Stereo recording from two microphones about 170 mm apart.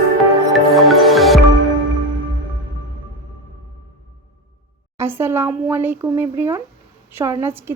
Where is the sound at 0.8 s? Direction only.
Centre (ahead or behind).